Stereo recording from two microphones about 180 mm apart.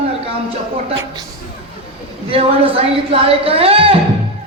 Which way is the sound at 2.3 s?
30° right (ahead or behind).